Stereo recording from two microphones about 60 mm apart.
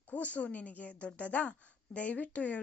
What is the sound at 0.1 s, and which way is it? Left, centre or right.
A woman's voice, left.